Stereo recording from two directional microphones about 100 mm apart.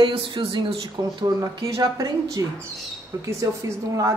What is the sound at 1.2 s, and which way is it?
Speech, 40° right (ahead or behind).